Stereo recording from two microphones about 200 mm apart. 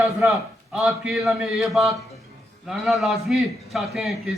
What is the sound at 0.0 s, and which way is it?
A man's voice, centre (ahead or behind).